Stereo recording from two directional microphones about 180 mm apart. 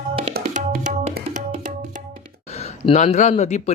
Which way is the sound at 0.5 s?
45° right (ahead or behind).